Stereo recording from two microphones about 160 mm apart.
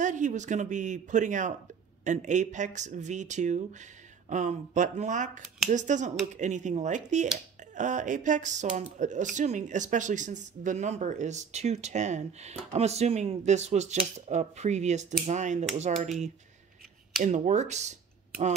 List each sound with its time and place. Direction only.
0.0 s speech: 50° right (ahead or behind)
17.2 s speech: 45° right (ahead or behind)